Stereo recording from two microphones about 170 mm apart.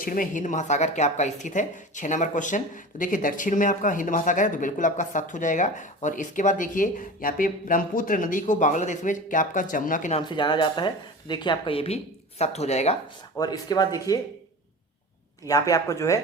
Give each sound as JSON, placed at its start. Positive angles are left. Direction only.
{"t": 0.0, "sound": "speech", "side_deg": 55}
{"t": 10.2, "sound": "speech", "side_deg": 25}
{"t": 13.3, "sound": "speech", "side_deg": 20}
{"t": 15.4, "sound": "speech", "side_deg": 20}